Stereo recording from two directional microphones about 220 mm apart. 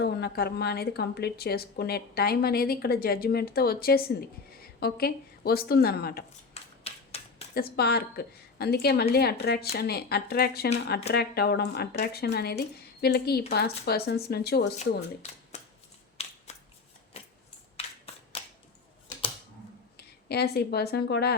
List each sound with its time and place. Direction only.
0.0 s a woman's voice: 45° left (ahead or behind)
6.5 s typewriter: 25° left (ahead or behind)
7.5 s a woman's voice: 45° left (ahead or behind)
14.8 s speech: 30° left (ahead or behind)
16.5 s scissors: 30° left (ahead or behind)
17.7 s crushing: 25° left (ahead or behind)
20.0 s speech: 45° left (ahead or behind)